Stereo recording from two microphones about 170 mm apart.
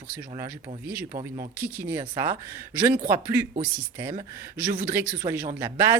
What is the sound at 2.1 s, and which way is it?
Speech, 20° right (ahead or behind).